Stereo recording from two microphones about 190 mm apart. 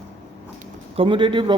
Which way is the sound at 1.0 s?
25° right (ahead or behind).